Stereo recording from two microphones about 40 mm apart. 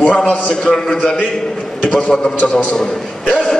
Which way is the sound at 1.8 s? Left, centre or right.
Left.